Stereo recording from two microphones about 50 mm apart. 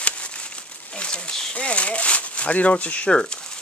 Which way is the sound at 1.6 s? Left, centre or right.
Left.